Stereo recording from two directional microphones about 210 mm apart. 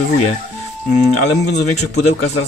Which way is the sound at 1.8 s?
35° left (ahead or behind).